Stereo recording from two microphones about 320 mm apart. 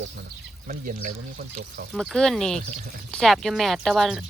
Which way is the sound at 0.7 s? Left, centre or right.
Right.